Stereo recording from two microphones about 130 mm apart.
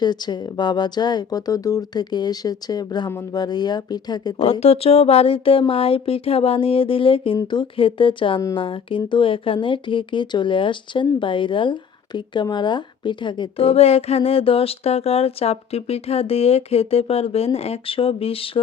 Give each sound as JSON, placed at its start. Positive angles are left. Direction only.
{"t": 0.0, "sound": "speech", "side_deg": 35}
{"t": 4.6, "sound": "speech", "side_deg": 50}